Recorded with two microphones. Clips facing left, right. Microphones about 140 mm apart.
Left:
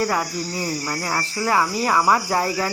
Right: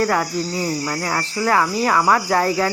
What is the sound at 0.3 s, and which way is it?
Cricket, 25° right (ahead or behind).